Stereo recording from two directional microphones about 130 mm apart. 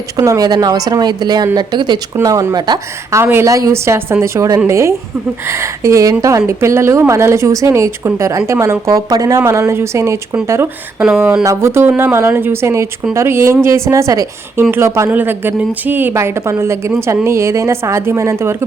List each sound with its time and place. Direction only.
0.2 s a woman's voice: 25° right (ahead or behind)
2.1 s a woman's voice: 25° right (ahead or behind)